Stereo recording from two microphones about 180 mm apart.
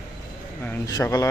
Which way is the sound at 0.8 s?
20° left (ahead or behind).